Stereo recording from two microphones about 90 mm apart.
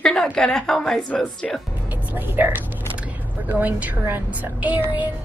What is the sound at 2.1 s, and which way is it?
A woman's voice, 20° right (ahead or behind).